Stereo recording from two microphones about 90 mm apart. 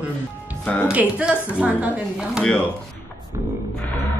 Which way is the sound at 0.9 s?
15° right (ahead or behind).